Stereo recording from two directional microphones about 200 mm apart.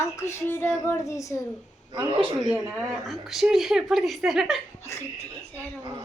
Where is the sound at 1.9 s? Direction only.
25° right (ahead or behind).